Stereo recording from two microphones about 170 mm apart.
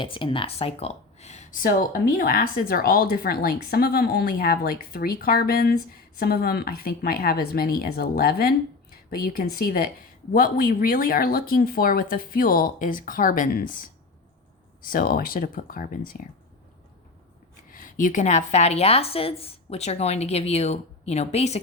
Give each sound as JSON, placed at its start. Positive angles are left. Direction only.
{"t": 0.0, "sound": "speech", "side_deg": 30}
{"t": 17.7, "sound": "speech", "side_deg": 55}